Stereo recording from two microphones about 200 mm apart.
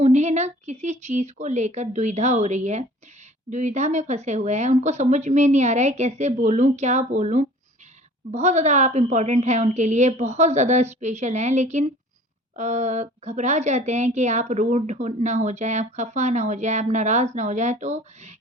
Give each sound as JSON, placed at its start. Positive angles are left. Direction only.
{"t": 0.0, "sound": "a woman's voice", "side_deg": -35}